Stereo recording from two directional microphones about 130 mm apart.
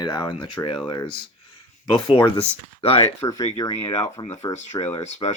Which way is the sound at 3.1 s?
25° left (ahead or behind).